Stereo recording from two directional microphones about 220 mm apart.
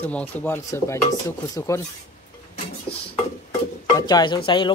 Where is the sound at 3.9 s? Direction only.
20° left (ahead or behind).